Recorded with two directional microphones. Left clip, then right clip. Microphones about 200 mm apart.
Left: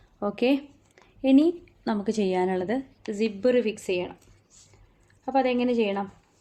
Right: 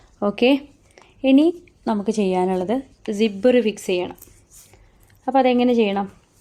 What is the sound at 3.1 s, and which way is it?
A woman's voice, 40° right (ahead or behind).